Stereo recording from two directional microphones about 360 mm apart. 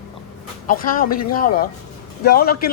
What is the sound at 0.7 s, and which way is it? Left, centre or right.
A man's voice, left.